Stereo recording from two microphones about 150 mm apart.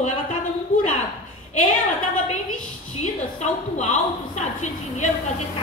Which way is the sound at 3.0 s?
50° left (ahead or behind).